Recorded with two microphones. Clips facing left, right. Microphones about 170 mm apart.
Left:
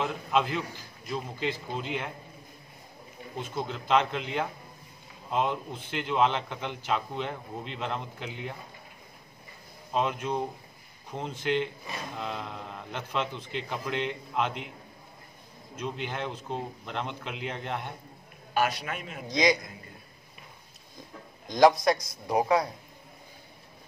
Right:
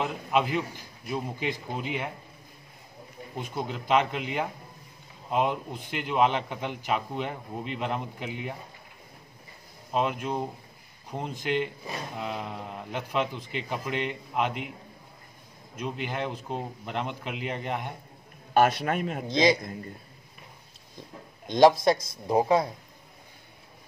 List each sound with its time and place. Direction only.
0.0 s a man's voice: 10° right (ahead or behind)
3.3 s a man's voice: 10° right (ahead or behind)
9.9 s a man's voice: 5° right (ahead or behind)
15.7 s a man's voice: 10° right (ahead or behind)
18.5 s a man's voice: 50° right (ahead or behind)
19.2 s a man's voice: 25° right (ahead or behind)
21.5 s a man's voice: 25° right (ahead or behind)